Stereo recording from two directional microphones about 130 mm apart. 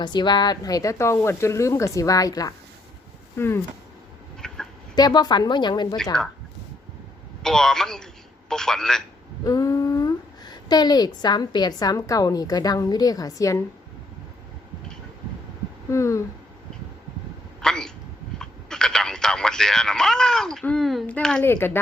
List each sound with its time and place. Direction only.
0.0 s speech: 35° left (ahead or behind); by 3.6 s 20° left (ahead or behind)
4.4 s a sound: 5° left (ahead or behind)
4.9 s speech: 30° left (ahead or behind)
7.4 s a man's voice: 5° left (ahead or behind)
9.4 s a woman's voice: 30° left (ahead or behind)
15.9 s speech: 20° left (ahead or behind)
17.6 s a sound: 5° left (ahead or behind)
18.3 s speech: 5° left (ahead or behind)
21.4 s speech: 15° left (ahead or behind)